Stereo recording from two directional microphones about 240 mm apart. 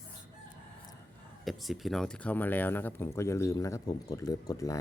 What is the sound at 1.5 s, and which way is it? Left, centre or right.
Speech, centre.